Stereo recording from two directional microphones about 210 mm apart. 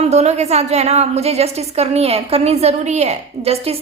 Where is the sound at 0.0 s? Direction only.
30° right (ahead or behind).